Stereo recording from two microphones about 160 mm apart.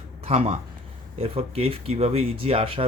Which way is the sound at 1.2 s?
40° right (ahead or behind).